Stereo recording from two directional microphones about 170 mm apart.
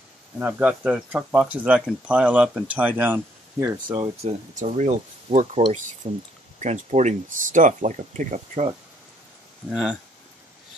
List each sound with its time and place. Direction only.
0.4 s speech: 10° right (ahead or behind)
4.0 s speech: 40° right (ahead or behind)
9.7 s speech: 5° right (ahead or behind)